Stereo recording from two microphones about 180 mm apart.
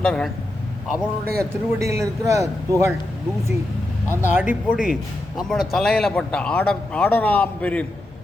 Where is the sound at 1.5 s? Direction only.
15° right (ahead or behind).